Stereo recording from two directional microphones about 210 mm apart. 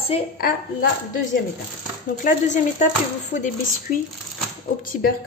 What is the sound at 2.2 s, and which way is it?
Speech, 35° left (ahead or behind).